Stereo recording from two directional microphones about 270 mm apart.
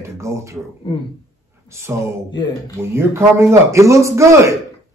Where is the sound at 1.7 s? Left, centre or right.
Centre.